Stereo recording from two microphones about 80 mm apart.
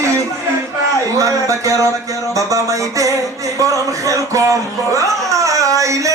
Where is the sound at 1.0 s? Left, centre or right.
Right.